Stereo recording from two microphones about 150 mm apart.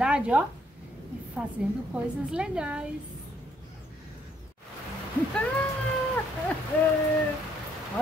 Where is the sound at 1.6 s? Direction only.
10° right (ahead or behind).